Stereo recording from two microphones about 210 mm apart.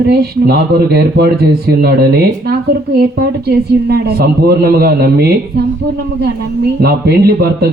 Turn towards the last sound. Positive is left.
turn(degrees=-50)  # may be behind; listen again after turning